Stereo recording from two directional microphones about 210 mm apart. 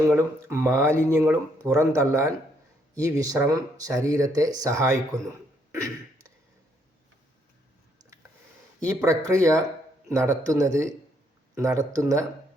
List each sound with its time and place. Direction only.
0.1 s speech: 10° right (ahead or behind)
5.7 s a sound: 15° right (ahead or behind)
8.8 s speech: 15° right (ahead or behind)